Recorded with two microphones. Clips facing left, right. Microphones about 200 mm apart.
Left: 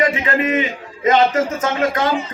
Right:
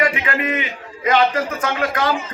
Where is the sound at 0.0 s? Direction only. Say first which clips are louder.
Left 3 dB; 25° left (ahead or behind).